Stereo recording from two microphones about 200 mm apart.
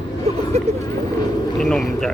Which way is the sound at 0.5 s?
30° right (ahead or behind).